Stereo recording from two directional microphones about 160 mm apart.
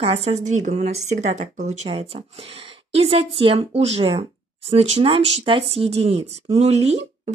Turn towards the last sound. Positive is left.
turn(degrees=-40)  # may be behind; listen again after turning